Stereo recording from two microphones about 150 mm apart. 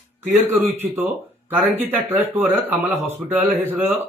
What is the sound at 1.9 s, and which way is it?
Speech, 15° right (ahead or behind).